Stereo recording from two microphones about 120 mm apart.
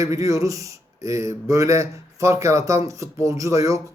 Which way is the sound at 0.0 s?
25° right (ahead or behind).